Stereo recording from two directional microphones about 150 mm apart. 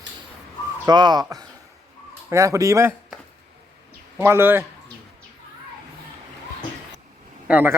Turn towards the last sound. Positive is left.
turn(degrees=-10)  # may be behind; listen again after turning